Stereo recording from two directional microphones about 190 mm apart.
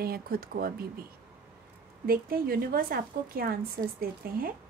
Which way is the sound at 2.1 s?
50° right (ahead or behind).